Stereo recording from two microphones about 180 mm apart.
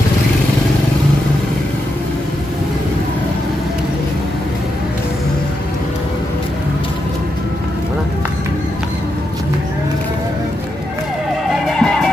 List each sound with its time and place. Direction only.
11.6 s music: 5° left (ahead or behind)